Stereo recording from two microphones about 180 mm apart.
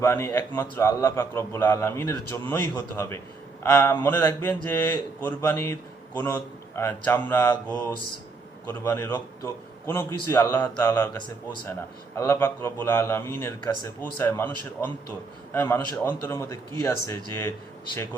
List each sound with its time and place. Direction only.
0.0 s a man's voice: 15° left (ahead or behind)